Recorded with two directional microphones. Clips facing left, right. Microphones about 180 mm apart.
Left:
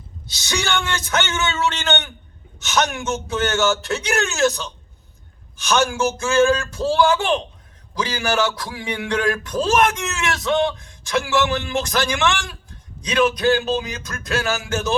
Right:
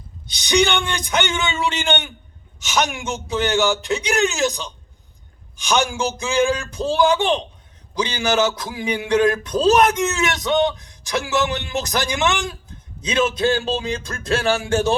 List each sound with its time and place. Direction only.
0.3 s speech: 15° right (ahead or behind)